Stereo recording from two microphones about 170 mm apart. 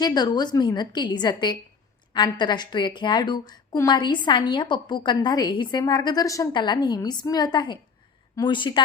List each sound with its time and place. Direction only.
0.0 s a woman's voice: 25° left (ahead or behind)